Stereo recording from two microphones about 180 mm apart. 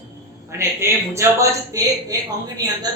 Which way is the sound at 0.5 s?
15° right (ahead or behind).